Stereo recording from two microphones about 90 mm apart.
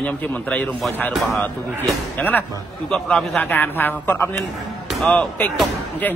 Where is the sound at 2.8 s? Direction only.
5° left (ahead or behind).